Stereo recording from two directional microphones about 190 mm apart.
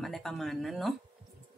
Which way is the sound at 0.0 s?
Centre (ahead or behind).